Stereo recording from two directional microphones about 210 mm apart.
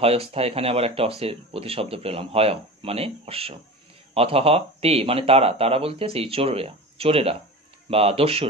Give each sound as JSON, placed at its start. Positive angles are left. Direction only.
{"t": 0.0, "sound": "speech", "side_deg": -25}